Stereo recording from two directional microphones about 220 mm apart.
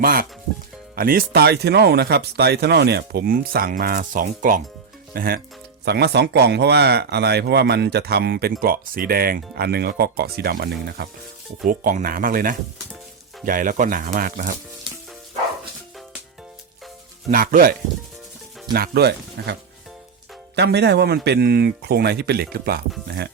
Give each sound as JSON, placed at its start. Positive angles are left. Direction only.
{"t": 0.0, "sound": "speech", "side_deg": -40}
{"t": 17.2, "sound": "speech", "side_deg": -40}
{"t": 20.6, "sound": "speech", "side_deg": -50}